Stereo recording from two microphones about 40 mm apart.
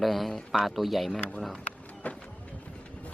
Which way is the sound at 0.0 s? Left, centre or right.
Centre.